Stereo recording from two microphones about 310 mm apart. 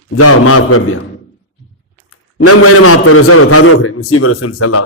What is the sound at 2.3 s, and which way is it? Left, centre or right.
A man's voice, left.